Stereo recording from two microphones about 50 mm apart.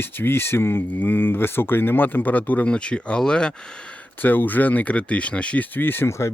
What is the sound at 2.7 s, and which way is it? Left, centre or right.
Speech, left.